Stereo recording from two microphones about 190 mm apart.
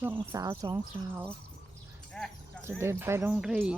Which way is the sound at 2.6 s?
15° right (ahead or behind).